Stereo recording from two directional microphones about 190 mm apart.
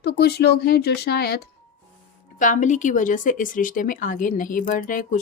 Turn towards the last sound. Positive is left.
turn(degrees=45)  # may be behind; listen again after turning